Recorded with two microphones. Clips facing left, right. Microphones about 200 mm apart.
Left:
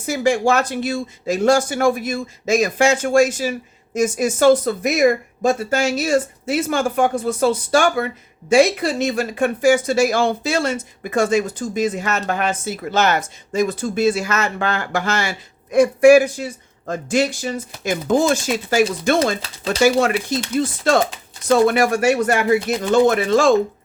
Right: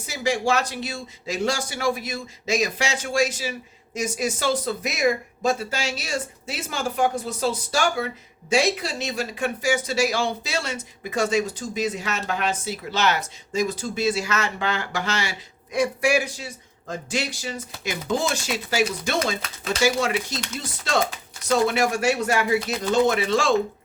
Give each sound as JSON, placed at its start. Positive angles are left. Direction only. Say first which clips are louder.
{"t": 0.0, "sound": "speech", "louder": "left 7 dB", "side_deg": 50}